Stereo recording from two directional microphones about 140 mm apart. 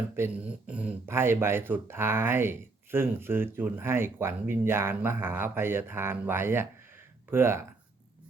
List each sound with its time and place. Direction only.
0.2 s speech: 10° right (ahead or behind)